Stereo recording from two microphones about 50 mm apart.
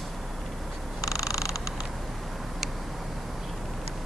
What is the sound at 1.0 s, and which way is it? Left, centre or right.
Creak, left.